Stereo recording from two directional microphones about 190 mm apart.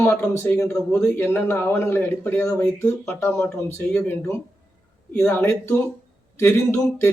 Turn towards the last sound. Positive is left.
turn(degrees=15)  # may be behind; listen again after turning